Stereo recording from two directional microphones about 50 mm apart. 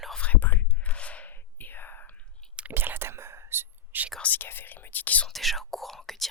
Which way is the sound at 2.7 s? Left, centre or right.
Right.